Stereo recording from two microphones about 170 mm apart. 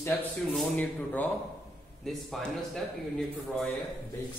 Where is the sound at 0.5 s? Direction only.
5° left (ahead or behind).